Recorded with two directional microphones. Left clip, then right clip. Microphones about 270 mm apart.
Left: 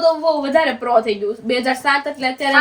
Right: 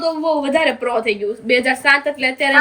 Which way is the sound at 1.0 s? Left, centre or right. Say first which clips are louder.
Right 1 dB; left.